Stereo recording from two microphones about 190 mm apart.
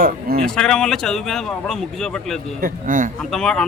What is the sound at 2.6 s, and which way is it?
Speech, 45° right (ahead or behind).